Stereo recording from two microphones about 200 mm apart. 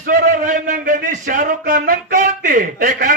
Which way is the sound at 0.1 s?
45° right (ahead or behind).